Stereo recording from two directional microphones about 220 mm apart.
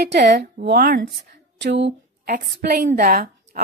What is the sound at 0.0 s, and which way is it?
A woman's voice, 50° right (ahead or behind).